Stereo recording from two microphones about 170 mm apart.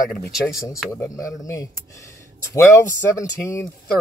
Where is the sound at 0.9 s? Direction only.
15° left (ahead or behind).